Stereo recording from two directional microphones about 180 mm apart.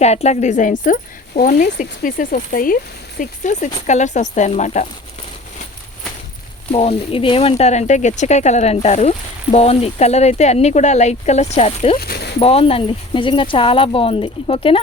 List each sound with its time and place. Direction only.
0.0 s speech: 35° left (ahead or behind)
6.7 s speech: 30° left (ahead or behind)
11.9 s speech: 60° left (ahead or behind)
12.4 s speech: 30° left (ahead or behind)